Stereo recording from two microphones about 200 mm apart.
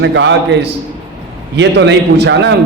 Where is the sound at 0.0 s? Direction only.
60° right (ahead or behind).